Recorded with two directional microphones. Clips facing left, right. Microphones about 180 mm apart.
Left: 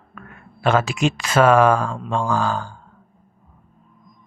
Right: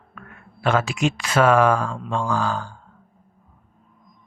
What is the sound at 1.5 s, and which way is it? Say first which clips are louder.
Speech: left 2 dB; 30° left (ahead or behind).